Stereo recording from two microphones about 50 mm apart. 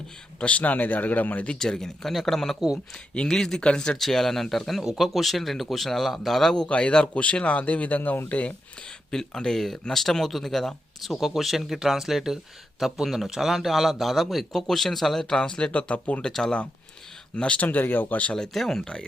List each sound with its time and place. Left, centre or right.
0.3 s speech: left
1.5 s speech: centre
3.9 s a man's voice: centre
4.8 s a man's voice: centre
6.7 s a man's voice: left
9.0 s a man's voice: centre
15.4 s a man's voice: left
17.3 s speech: left
18.3 s a man's voice: centre